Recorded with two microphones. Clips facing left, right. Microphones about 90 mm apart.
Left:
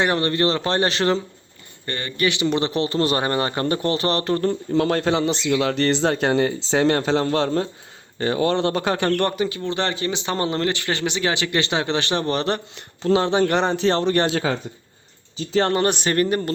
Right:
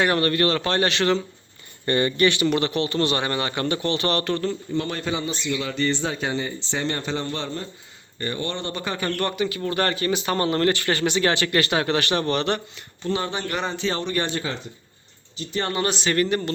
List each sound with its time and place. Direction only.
0.0 s speech: 25° left (ahead or behind)
1.9 s speech: 10° right (ahead or behind)
2.4 s a man's voice: 25° left (ahead or behind)
4.8 s speech: 75° left (ahead or behind); by 9.6 s 35° left (ahead or behind)
9.6 s speech: 20° left (ahead or behind)
13.0 s speech: 90° left
15.7 s speech: 50° left (ahead or behind)